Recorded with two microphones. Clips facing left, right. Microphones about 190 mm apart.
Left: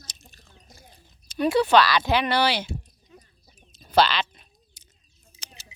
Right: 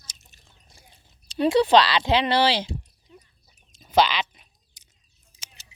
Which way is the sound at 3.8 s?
15° right (ahead or behind).